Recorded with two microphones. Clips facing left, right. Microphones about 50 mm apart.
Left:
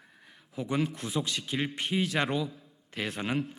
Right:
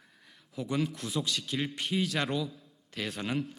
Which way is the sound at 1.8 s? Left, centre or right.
Centre.